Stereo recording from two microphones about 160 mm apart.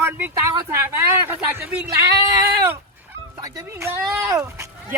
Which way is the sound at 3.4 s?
20° right (ahead or behind).